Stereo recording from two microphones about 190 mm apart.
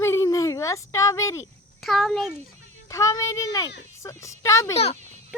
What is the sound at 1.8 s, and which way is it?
Child singing, centre (ahead or behind).